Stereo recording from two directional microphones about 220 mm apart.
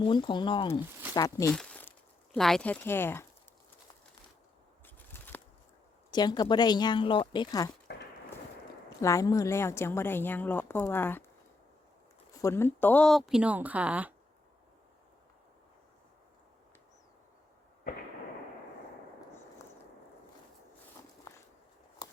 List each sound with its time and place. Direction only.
0.0 s speech: 20° left (ahead or behind)
1.5 s crumpling: 5° left (ahead or behind)
2.3 s a woman's voice: 5° left (ahead or behind)
4.9 s biting: 10° left (ahead or behind)
6.1 s speech: 20° left (ahead or behind)
7.9 s a sound: 50° left (ahead or behind)
9.0 s a woman's voice: 15° left (ahead or behind)
12.3 s speech: 15° left (ahead or behind); by 14.1 s 5° right (ahead or behind)
22.0 s scissors: 20° left (ahead or behind)